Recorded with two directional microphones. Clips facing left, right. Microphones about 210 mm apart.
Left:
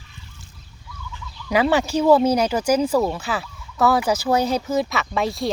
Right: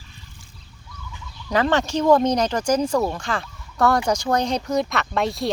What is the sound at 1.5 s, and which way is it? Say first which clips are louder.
Speech: left 2 dB; 10° left (ahead or behind).